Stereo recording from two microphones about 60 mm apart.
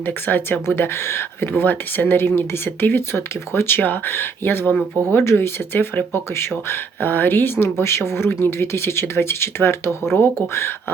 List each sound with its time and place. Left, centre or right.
0.3 s speech: left
1.0 s speech: left